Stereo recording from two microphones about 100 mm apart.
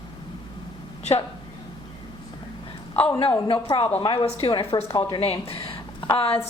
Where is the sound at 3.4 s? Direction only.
60° left (ahead or behind).